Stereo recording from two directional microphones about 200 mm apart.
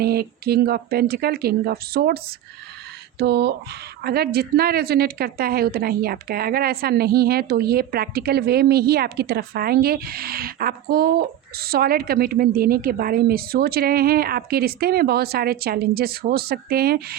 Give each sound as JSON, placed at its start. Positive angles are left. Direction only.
{"t": 0.0, "sound": "a woman's voice", "side_deg": -50}